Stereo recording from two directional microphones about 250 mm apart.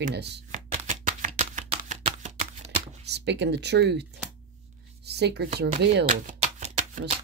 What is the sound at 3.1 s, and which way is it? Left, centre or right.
Speech, right.